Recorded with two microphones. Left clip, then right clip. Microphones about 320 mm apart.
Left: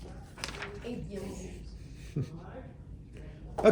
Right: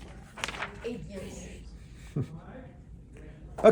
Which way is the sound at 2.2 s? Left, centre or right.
Centre.